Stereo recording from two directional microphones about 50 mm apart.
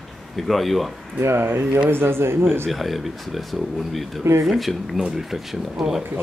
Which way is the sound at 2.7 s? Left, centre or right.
Centre.